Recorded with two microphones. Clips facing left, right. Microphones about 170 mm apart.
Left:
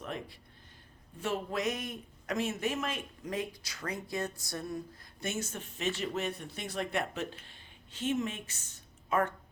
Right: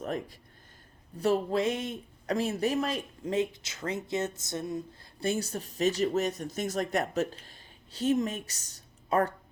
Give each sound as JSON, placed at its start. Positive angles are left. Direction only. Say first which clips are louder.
{"t": 0.0, "sound": "speech", "louder": "right 6 dB", "side_deg": -40}
{"t": 5.2, "sound": "speech", "louder": "right 6 dB", "side_deg": -35}